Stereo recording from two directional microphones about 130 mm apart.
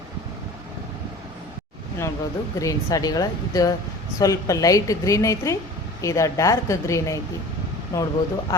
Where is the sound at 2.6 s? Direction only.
25° left (ahead or behind).